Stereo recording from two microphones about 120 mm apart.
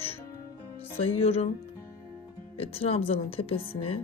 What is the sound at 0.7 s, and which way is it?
Speech, 55° left (ahead or behind).